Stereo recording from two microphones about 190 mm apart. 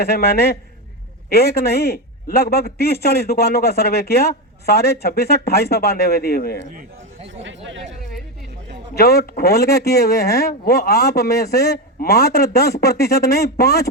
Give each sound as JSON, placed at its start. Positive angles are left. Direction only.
{"t": 0.0, "sound": "speech", "side_deg": 55}
{"t": 6.7, "sound": "a man's voice", "side_deg": -40}
{"t": 7.4, "sound": "speech", "side_deg": -75}
{"t": 9.0, "sound": "speech", "side_deg": 55}